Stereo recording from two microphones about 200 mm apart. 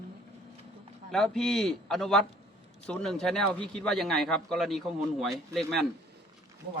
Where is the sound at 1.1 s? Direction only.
Centre (ahead or behind).